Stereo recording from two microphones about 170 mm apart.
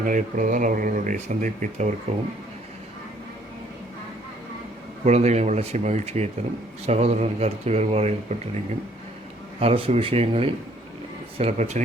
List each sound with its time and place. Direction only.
0.0 s speech: 50° right (ahead or behind)
5.0 s speech: 40° right (ahead or behind)